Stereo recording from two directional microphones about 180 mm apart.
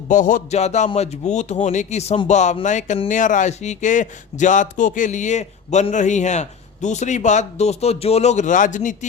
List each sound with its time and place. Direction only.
0.1 s music: 45° left (ahead or behind)
0.9 s speech: 35° left (ahead or behind)